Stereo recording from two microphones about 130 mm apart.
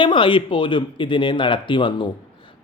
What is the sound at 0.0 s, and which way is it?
Speech, 40° left (ahead or behind).